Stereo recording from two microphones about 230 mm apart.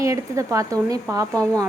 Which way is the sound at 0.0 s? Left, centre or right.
Centre.